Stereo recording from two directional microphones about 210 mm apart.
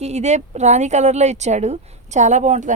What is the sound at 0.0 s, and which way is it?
A woman's voice, 30° right (ahead or behind).